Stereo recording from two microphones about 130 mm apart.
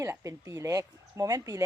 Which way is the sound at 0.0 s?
20° right (ahead or behind).